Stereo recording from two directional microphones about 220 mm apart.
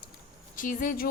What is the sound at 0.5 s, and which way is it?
Speech, 40° left (ahead or behind).